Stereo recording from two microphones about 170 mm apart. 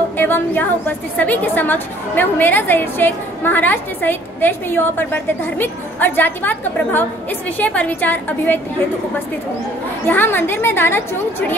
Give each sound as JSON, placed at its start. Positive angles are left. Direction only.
{"t": 0.2, "sound": "a woman's voice", "side_deg": 10}
{"t": 10.0, "sound": "a woman's voice", "side_deg": 10}